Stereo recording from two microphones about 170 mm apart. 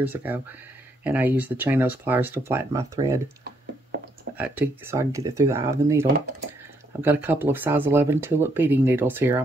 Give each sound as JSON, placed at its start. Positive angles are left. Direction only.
{"t": 0.0, "sound": "speech", "side_deg": -10}
{"t": 4.4, "sound": "speech", "side_deg": -10}